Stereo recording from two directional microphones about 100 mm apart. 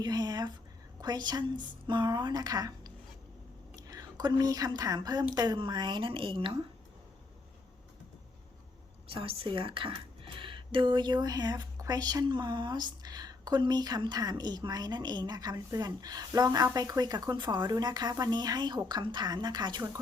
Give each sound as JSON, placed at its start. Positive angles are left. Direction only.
{"t": 0.0, "sound": "a sound", "side_deg": -40}
{"t": 1.0, "sound": "speech", "side_deg": -45}
{"t": 9.0, "sound": "speech", "side_deg": -65}